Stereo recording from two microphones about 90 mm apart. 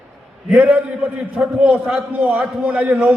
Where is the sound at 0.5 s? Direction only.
15° right (ahead or behind).